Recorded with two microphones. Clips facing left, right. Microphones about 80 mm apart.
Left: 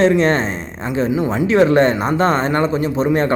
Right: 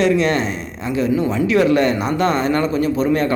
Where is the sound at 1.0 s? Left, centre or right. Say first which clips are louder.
Right 1 dB; centre.